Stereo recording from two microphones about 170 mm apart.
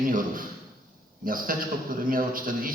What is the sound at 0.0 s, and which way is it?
A man's voice, 55° right (ahead or behind).